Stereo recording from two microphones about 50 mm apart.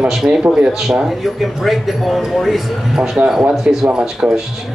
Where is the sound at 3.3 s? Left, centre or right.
Centre.